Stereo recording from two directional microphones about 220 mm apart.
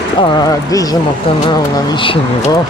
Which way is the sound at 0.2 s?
20° left (ahead or behind).